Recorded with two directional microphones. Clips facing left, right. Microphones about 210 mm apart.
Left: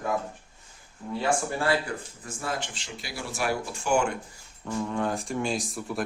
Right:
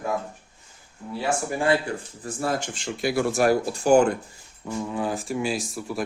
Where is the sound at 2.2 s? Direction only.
40° right (ahead or behind).